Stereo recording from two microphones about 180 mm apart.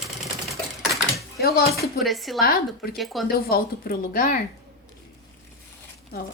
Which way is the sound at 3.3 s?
55° left (ahead or behind).